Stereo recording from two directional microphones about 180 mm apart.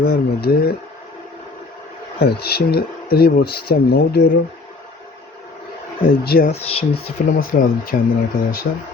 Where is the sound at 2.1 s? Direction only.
60° left (ahead or behind).